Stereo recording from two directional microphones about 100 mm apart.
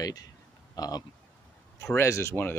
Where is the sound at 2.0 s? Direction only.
30° left (ahead or behind).